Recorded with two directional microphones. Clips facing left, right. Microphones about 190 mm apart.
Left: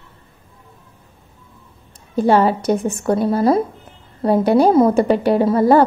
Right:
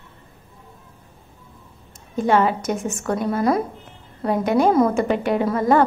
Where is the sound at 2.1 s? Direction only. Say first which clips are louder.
Left 4 dB; 35° left (ahead or behind).